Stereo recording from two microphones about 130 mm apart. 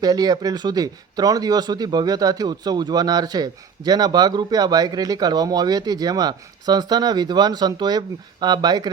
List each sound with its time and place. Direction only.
0.0 s speech: 30° right (ahead or behind)